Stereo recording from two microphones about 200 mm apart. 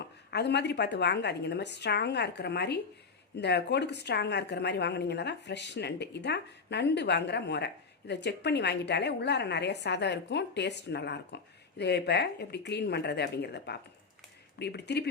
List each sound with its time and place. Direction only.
0.0 s a woman's voice: 55° left (ahead or behind)